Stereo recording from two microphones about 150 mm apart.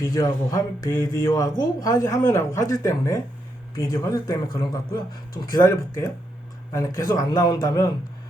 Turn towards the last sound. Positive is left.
turn(degrees=25)  # may be behind; listen again after turning